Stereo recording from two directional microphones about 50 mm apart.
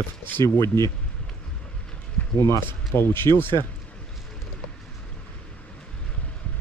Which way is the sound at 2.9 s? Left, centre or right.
Left.